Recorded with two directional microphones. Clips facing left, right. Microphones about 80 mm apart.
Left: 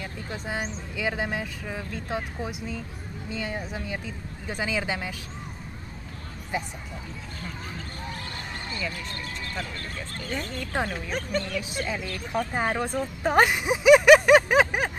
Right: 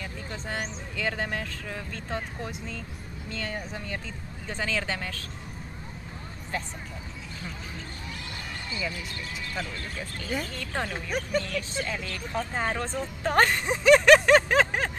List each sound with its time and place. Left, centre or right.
0.0 s speech: centre
6.5 s speech: centre
9.1 s speech: left
9.6 s speech: centre
10.6 s speech: centre
11.1 s speech: centre
11.8 s speech: centre